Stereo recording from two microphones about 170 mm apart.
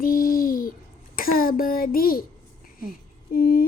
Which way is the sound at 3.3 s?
60° left (ahead or behind).